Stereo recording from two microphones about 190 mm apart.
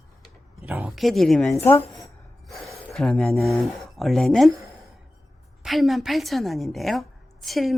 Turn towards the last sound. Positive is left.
turn(degrees=0)  # may be behind; listen again after turning